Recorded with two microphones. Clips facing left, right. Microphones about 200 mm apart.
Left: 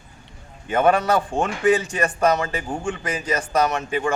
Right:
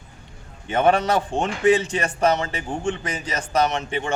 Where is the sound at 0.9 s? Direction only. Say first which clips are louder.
Even; 25° right (ahead or behind).